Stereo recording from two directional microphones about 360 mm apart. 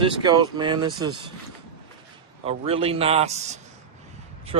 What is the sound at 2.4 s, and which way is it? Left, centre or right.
Speech, centre.